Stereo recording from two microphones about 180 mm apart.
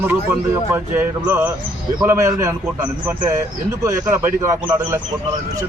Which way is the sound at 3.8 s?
15° right (ahead or behind).